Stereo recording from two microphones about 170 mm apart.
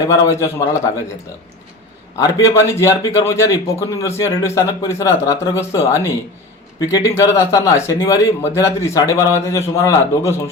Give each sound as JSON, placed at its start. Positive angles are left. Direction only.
{"t": 0.1, "sound": "a man's voice", "side_deg": 20}
{"t": 2.1, "sound": "a man's voice", "side_deg": 20}